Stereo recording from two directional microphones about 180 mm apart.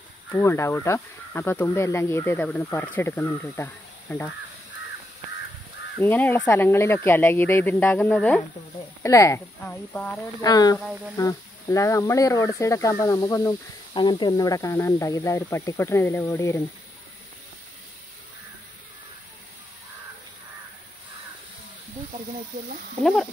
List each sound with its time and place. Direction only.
0.3 s speech: 15° left (ahead or behind)
5.9 s speech: 10° left (ahead or behind)
10.4 s speech: 20° left (ahead or behind)